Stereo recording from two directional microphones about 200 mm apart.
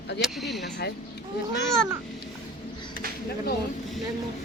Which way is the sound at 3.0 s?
45° right (ahead or behind).